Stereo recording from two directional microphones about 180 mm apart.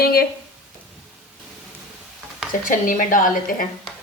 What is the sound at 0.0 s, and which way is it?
Speech, 55° left (ahead or behind).